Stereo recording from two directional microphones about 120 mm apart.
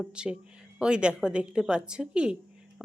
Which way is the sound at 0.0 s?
10° right (ahead or behind).